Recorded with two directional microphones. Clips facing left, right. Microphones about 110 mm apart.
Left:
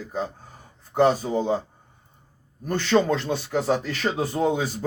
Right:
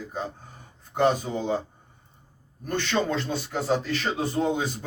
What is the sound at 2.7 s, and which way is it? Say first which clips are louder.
Speech: left 5 dB; 45° left (ahead or behind).